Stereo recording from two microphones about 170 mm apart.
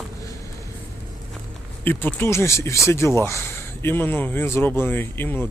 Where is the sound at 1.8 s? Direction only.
10° left (ahead or behind).